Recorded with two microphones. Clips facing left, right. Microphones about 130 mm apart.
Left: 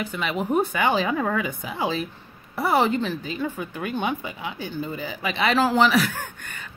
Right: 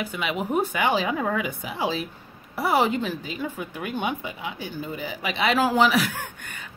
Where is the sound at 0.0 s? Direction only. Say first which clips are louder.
Left 1 dB; 10° right (ahead or behind).